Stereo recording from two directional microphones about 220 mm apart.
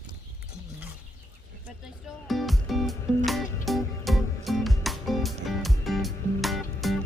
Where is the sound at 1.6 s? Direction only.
Centre (ahead or behind).